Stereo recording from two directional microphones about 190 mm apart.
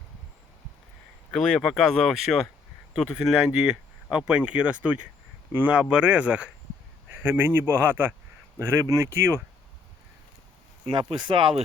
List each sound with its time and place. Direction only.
1.3 s a man's voice: 5° left (ahead or behind); by 9.4 s 15° right (ahead or behind)
10.8 s speech: 25° right (ahead or behind)